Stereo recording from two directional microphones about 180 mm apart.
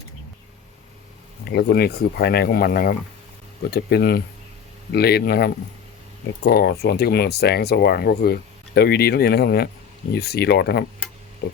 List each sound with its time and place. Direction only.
1.5 s speech: 60° left (ahead or behind)